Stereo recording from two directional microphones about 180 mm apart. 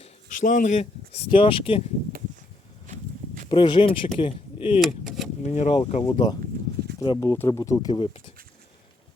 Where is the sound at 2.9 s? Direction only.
45° right (ahead or behind).